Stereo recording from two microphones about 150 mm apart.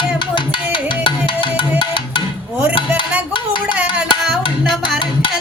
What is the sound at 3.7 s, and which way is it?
Music, 5° right (ahead or behind).